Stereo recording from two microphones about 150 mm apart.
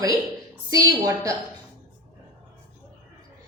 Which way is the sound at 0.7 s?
20° right (ahead or behind).